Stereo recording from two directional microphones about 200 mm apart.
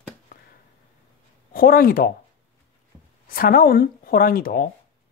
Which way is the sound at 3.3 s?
45° left (ahead or behind).